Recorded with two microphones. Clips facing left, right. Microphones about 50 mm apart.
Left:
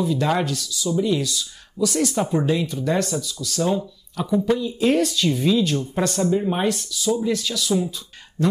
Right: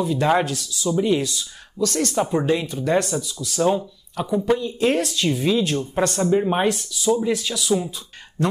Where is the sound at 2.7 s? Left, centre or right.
Centre.